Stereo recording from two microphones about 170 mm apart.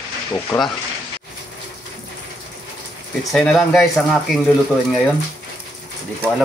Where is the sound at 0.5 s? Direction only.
15° left (ahead or behind).